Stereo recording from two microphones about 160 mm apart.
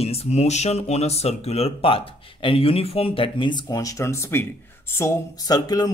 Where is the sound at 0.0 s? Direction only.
40° left (ahead or behind).